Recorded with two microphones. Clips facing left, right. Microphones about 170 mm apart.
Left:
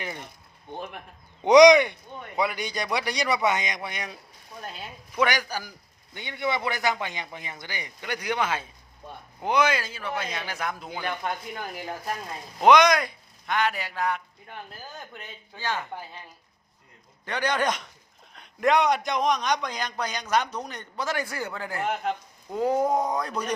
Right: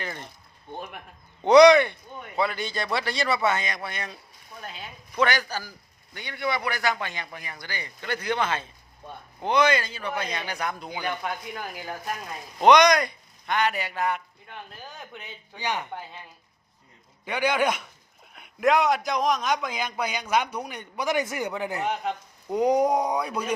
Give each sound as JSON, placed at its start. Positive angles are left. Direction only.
{"t": 0.0, "sound": "speech", "side_deg": 15}
{"t": 1.5, "sound": "speech", "side_deg": 15}
{"t": 4.6, "sound": "a man's voice", "side_deg": 5}
{"t": 12.5, "sound": "speech", "side_deg": 0}
{"t": 15.5, "sound": "a man's voice", "side_deg": -15}
{"t": 17.2, "sound": "a man's voice", "side_deg": -10}
{"t": 21.8, "sound": "speech", "side_deg": 0}
{"t": 22.4, "sound": "a man's voice", "side_deg": -20}